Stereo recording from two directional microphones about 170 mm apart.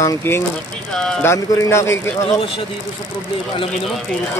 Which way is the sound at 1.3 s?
15° left (ahead or behind).